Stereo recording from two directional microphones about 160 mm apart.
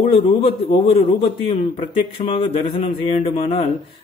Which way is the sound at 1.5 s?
35° left (ahead or behind).